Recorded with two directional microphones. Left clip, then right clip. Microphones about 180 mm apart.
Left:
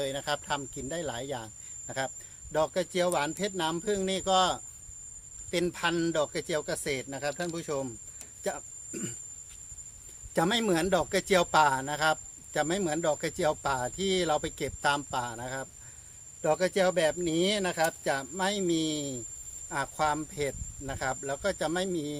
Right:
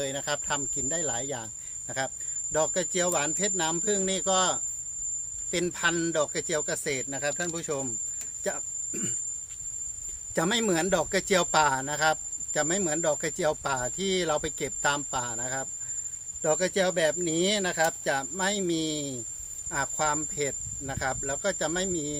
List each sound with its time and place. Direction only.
0.0 s speech: 15° left (ahead or behind)
10.3 s speech: 15° left (ahead or behind)